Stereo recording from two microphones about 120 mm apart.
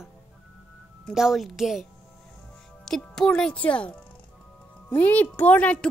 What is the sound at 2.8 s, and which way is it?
Speech, 5° left (ahead or behind).